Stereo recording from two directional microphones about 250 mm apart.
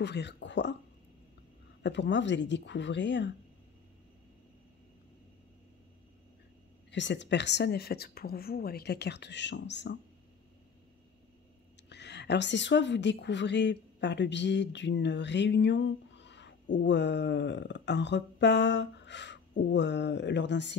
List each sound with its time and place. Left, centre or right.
0.0 s speech: left
1.8 s speech: left
6.9 s a woman's voice: left
11.9 s a woman's voice: left